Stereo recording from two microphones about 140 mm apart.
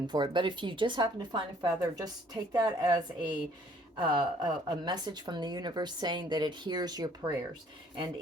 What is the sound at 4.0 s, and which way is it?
Speech, 30° right (ahead or behind).